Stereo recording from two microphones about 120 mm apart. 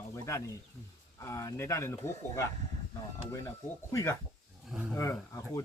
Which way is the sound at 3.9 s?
25° left (ahead or behind).